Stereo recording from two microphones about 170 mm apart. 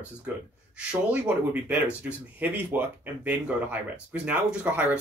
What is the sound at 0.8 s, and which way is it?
Speech, 5° right (ahead or behind).